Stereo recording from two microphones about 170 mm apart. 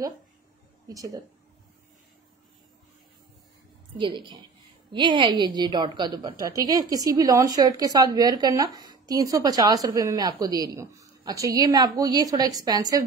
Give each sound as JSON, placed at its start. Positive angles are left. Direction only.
{"t": 0.8, "sound": "a woman's voice", "side_deg": -20}
{"t": 4.0, "sound": "a woman's voice", "side_deg": -30}